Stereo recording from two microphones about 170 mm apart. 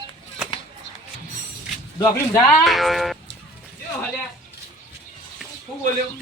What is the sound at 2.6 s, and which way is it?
Speech, centre (ahead or behind).